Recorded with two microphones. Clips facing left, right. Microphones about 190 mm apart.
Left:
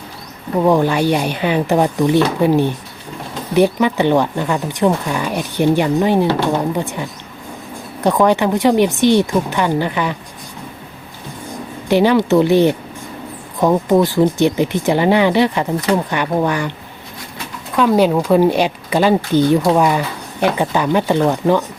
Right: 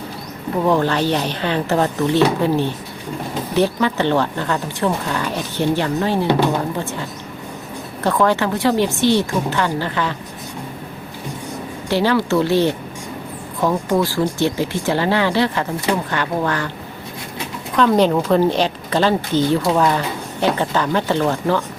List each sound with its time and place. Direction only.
0.6 s speech: 15° left (ahead or behind)
11.9 s speech: 15° left (ahead or behind)
17.7 s speech: 10° left (ahead or behind)